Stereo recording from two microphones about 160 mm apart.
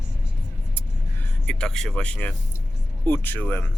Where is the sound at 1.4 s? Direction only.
5° left (ahead or behind).